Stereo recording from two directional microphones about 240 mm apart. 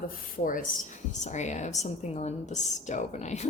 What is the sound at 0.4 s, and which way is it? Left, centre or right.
A woman's voice, left.